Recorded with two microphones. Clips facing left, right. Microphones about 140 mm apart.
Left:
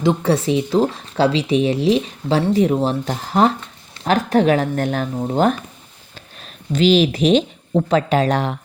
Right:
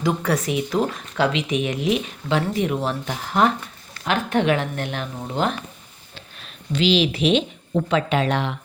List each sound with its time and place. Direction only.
0.0 s speech: 25° left (ahead or behind)